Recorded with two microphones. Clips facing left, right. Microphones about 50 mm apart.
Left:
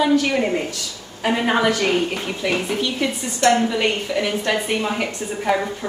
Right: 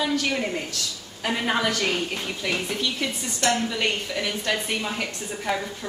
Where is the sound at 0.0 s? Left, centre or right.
Centre.